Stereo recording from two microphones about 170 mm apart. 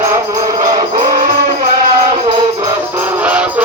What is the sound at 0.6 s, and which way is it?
Music, 50° right (ahead or behind).